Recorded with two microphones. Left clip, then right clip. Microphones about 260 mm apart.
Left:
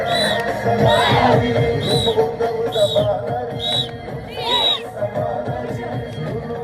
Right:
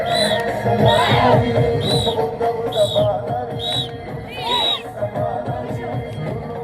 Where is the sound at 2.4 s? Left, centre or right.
Left.